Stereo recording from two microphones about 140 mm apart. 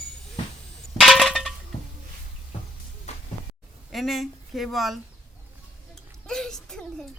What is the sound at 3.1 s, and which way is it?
Music, 50° left (ahead or behind).